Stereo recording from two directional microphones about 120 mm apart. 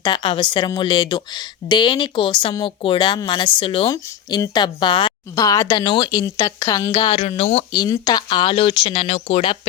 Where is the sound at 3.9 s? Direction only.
35° left (ahead or behind).